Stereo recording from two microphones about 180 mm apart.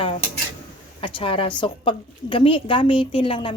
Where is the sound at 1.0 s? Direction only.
30° left (ahead or behind).